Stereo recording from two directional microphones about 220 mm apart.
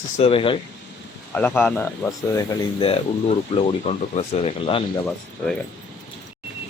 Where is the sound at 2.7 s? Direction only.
25° left (ahead or behind).